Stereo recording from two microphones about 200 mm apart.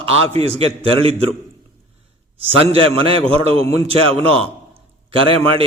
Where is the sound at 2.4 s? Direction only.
30° right (ahead or behind).